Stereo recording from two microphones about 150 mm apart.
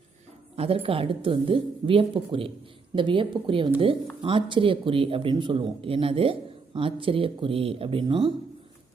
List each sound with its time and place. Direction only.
0.5 s speech: 40° right (ahead or behind)